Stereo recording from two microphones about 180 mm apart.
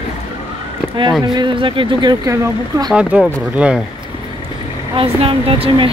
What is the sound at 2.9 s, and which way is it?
Speech, 5° right (ahead or behind).